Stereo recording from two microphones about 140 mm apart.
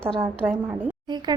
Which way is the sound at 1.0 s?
30° right (ahead or behind).